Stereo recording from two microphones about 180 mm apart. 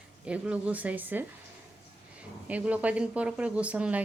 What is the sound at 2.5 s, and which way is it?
A woman's voice, 10° right (ahead or behind).